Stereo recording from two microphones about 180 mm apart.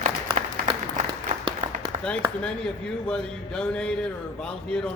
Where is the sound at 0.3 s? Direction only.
45° right (ahead or behind).